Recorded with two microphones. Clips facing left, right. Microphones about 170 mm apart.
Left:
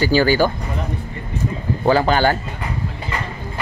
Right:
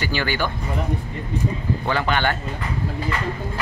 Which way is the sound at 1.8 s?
35° left (ahead or behind).